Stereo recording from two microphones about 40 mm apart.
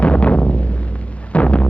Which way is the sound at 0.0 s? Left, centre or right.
Left.